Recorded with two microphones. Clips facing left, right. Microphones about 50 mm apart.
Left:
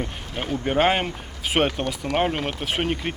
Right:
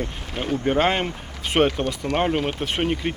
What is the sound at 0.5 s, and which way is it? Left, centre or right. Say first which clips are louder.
Speech: even; centre.